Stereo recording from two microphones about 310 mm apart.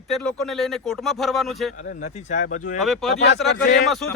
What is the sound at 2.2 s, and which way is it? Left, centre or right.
Speech, left.